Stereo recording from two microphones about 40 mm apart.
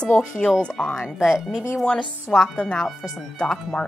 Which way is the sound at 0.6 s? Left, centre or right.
Left.